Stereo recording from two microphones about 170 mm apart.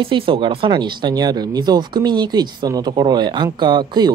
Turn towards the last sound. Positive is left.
turn(degrees=-25)  # may be behind; listen again after turning